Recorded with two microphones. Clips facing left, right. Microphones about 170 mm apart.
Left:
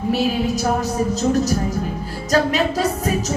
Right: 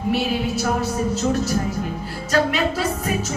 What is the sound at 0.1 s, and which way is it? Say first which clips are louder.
A woman's voice: left 2 dB; 40° left (ahead or behind).